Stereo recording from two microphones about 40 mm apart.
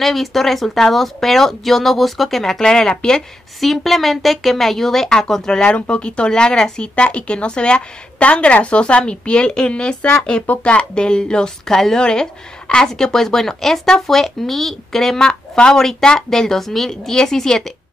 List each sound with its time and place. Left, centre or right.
0.0 s speech: centre
2.6 s a woman's voice: centre
3.6 s a woman's voice: centre
5.6 s speech: left
7.0 s a woman's voice: left; by 15.2 s centre
15.2 s a woman's voice: left